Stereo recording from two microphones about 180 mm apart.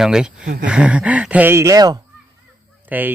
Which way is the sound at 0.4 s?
50° right (ahead or behind).